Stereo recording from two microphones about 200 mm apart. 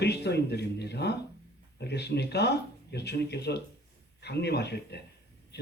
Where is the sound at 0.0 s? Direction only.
55° left (ahead or behind).